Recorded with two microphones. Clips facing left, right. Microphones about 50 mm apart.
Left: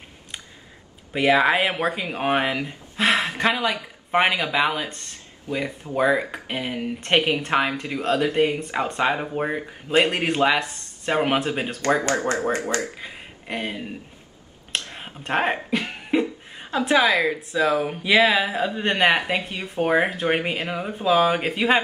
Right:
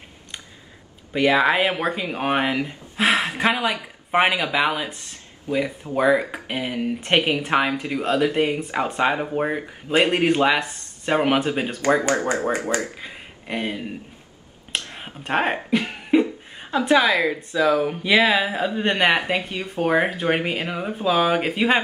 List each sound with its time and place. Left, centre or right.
1.1 s speech: centre
12.4 s speech: centre
13.0 s speech: centre
15.0 s speech: centre
16.1 s a sound: centre
17.3 s speech: centre